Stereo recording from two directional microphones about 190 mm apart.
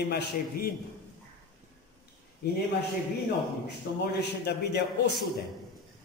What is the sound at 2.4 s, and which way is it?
Speech, 60° left (ahead or behind).